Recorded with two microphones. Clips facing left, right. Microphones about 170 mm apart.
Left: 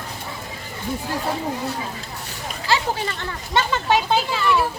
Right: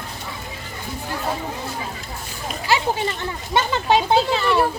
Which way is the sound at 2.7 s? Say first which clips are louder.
Right 2 dB; 20° right (ahead or behind).